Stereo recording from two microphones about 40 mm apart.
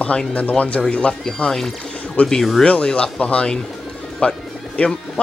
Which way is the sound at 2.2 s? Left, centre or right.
Left.